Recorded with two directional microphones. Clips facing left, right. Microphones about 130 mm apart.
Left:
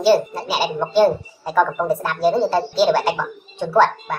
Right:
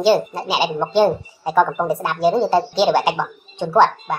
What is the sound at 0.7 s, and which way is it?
A woman's voice, 15° right (ahead or behind).